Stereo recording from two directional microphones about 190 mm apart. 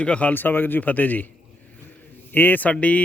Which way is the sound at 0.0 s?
5° left (ahead or behind).